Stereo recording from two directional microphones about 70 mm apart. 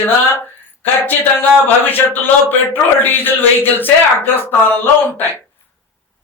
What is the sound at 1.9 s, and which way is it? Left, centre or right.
Speech, left.